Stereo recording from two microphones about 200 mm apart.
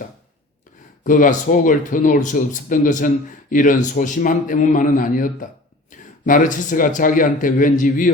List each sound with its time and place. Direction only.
1.0 s speech: 40° left (ahead or behind)